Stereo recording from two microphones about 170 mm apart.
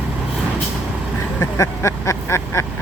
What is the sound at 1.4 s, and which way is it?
Vehicle, 20° left (ahead or behind).